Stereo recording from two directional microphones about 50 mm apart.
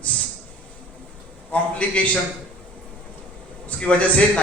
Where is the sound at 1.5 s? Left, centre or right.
Left.